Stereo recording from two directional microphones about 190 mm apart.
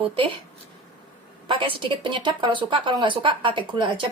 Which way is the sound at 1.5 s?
25° right (ahead or behind).